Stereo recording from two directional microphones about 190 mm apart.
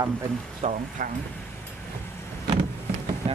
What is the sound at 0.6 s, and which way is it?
Speech, 35° right (ahead or behind).